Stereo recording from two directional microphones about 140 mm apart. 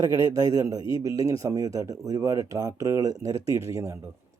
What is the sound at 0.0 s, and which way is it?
A man's voice, 25° right (ahead or behind).